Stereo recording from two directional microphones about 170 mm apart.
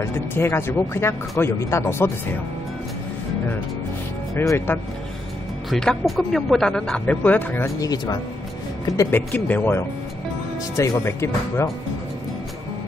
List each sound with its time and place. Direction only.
0.0 s speech: 15° left (ahead or behind)
4.4 s speech: 15° left (ahead or behind)
5.7 s speech: centre (ahead or behind)